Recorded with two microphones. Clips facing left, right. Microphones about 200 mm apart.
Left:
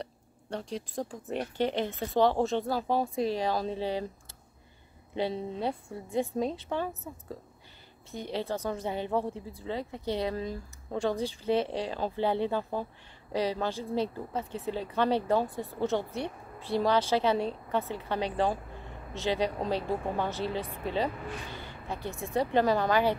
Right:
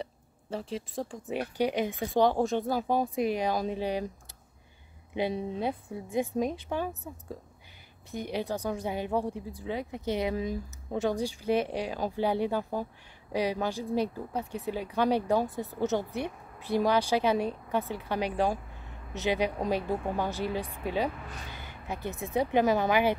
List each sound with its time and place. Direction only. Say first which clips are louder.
0.0 s speech: right 2 dB; 5° right (ahead or behind)
1.6 s speech: right 1 dB; 10° right (ahead or behind)
5.1 s speech: right 1 dB; 15° right (ahead or behind)
8.1 s speech: right 1 dB; 15° right (ahead or behind)
8.5 s speech: even; centre (ahead or behind)
16.1 s speech: right 1 dB; 15° right (ahead or behind)